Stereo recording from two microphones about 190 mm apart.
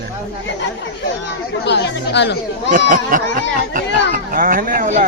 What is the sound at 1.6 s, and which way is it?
Speech, 65° left (ahead or behind).